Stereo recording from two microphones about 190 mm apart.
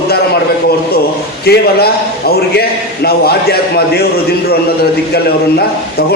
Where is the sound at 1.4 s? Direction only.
55° left (ahead or behind).